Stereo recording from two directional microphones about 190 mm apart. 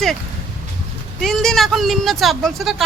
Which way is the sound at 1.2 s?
Centre (ahead or behind).